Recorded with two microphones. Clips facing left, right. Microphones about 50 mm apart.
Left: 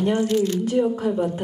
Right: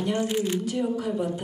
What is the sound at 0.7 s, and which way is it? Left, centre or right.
Speech, left.